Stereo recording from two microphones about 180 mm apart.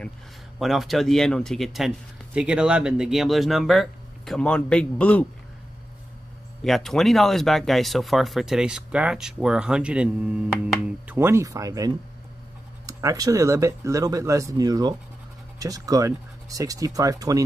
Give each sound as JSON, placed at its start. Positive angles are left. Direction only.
{"t": 0.6, "sound": "speech", "side_deg": 0}
{"t": 6.6, "sound": "speech", "side_deg": 0}